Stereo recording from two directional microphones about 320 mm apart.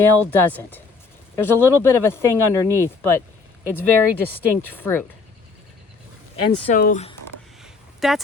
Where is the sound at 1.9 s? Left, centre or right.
Centre.